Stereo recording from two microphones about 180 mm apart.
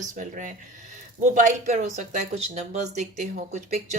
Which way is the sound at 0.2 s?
45° right (ahead or behind).